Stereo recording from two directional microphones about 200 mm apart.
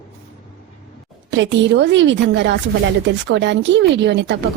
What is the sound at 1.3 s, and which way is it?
A woman's voice, 65° right (ahead or behind).